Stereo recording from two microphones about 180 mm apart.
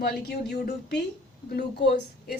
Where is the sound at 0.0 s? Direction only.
65° left (ahead or behind).